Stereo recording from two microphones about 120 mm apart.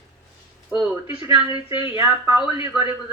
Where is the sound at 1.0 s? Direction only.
45° left (ahead or behind).